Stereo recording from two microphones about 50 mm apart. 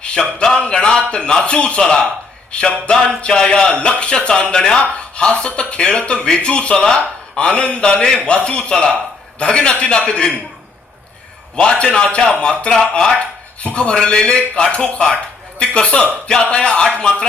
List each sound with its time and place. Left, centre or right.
0.0 s a man's voice: centre
11.5 s a man's voice: centre
13.9 s a man's voice: centre